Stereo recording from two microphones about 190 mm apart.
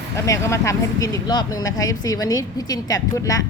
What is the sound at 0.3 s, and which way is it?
A woman's voice, 15° left (ahead or behind).